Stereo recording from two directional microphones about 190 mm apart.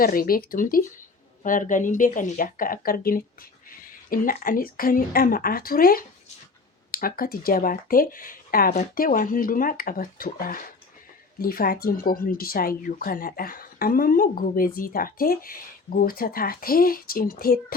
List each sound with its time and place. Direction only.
0.0 s speech: 50° left (ahead or behind)